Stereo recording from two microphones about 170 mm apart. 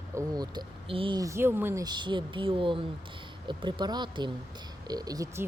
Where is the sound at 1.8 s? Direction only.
25° right (ahead or behind).